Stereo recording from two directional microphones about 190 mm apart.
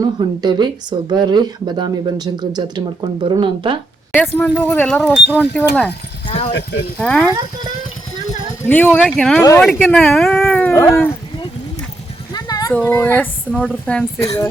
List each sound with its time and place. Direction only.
0.2 s speech: 20° right (ahead or behind)
4.4 s speech: 10° left (ahead or behind)
6.2 s a sound: 30° left (ahead or behind)
6.5 s speech: 60° left (ahead or behind)
7.0 s speech: 5° left (ahead or behind)
8.6 s speech: 10° left (ahead or behind)
12.3 s a sound: 20° left (ahead or behind)
12.7 s speech: 10° left (ahead or behind)